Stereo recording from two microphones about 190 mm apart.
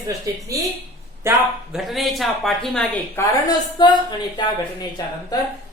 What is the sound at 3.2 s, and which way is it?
Speech, 20° left (ahead or behind).